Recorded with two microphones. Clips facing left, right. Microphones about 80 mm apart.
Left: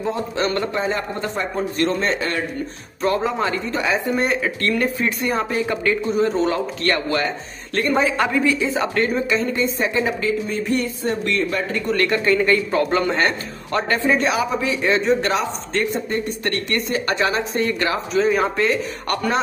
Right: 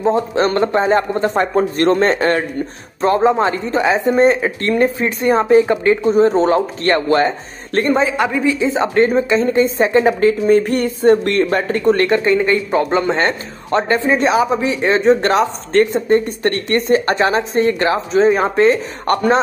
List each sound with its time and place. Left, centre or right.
0.0 s speech: right
1.3 s a man's voice: right
3.0 s speech: right
7.9 s a woman's voice: centre; by 10.0 s right
10.0 s speech: right